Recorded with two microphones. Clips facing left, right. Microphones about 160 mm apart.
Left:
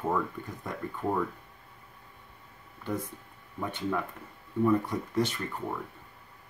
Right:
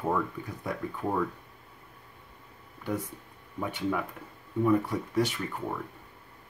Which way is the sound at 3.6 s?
10° right (ahead or behind).